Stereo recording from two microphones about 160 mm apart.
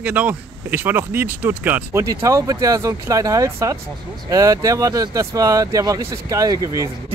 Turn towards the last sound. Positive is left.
turn(degrees=-20)  # may be behind; listen again after turning